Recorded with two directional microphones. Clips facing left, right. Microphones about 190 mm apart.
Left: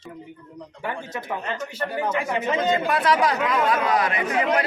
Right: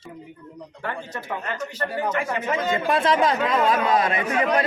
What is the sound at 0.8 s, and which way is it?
A man's voice, 10° left (ahead or behind).